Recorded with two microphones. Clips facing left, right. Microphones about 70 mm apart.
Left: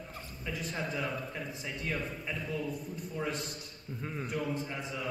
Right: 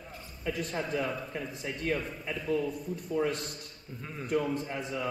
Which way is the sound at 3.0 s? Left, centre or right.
Right.